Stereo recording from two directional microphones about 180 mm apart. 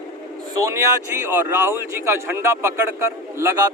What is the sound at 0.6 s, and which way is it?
A man's voice, 15° right (ahead or behind).